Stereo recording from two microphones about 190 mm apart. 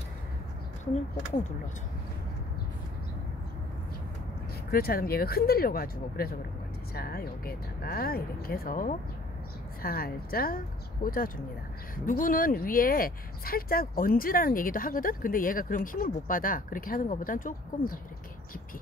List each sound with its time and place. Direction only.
4.6 s speech: 50° left (ahead or behind)